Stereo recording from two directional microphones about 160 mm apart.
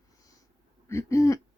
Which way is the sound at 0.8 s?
20° left (ahead or behind).